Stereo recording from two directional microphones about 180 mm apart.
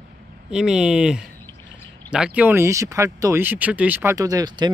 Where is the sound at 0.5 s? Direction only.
5° right (ahead or behind).